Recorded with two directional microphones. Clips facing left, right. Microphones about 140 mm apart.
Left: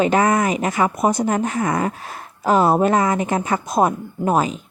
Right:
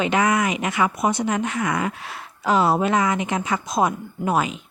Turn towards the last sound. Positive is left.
turn(degrees=40)  # may be behind; listen again after turning